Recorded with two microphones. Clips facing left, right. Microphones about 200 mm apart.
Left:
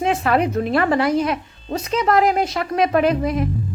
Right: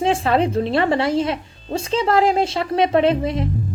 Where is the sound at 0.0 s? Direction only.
30° right (ahead or behind).